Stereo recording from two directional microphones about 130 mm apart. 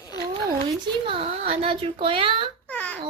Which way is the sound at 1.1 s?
50° right (ahead or behind).